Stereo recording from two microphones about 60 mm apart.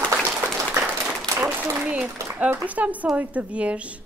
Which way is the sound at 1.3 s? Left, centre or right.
Right.